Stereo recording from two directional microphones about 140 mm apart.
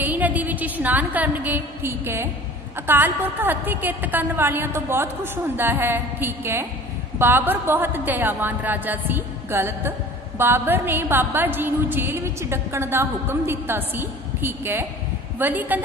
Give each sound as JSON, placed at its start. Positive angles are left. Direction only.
{"t": 0.0, "sound": "music", "side_deg": -10}
{"t": 2.9, "sound": "a woman's voice", "side_deg": -15}